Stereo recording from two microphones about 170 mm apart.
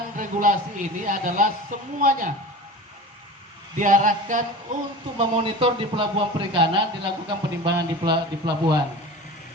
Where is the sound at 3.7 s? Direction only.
50° right (ahead or behind).